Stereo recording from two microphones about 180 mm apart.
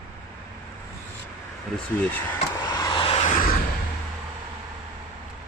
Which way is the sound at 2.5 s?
20° left (ahead or behind).